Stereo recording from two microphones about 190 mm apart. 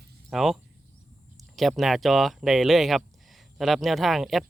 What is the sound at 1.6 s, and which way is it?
Speech, centre (ahead or behind).